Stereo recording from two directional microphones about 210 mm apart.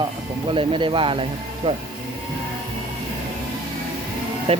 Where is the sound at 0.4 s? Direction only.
25° right (ahead or behind).